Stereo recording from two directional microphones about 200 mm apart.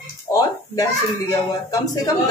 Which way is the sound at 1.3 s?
20° left (ahead or behind).